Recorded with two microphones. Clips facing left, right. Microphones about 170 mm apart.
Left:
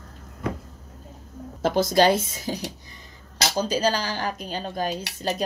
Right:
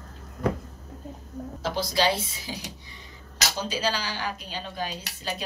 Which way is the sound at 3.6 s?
45° left (ahead or behind).